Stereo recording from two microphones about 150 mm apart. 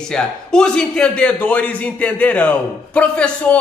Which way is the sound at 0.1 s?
5° left (ahead or behind).